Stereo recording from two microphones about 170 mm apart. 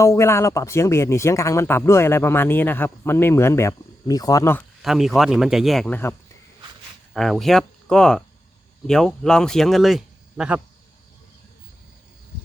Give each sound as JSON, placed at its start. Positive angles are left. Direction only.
{"t": 0.0, "sound": "speech", "side_deg": 15}
{"t": 4.8, "sound": "speech", "side_deg": 0}
{"t": 7.1, "sound": "speech", "side_deg": 0}